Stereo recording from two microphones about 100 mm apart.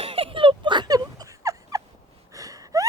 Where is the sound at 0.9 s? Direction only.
40° right (ahead or behind).